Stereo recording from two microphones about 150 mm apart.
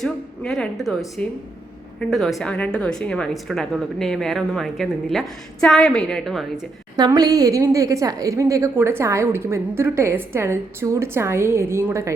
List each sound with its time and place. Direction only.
0.0 s a woman's voice: centre (ahead or behind)
6.9 s a woman's voice: 25° right (ahead or behind)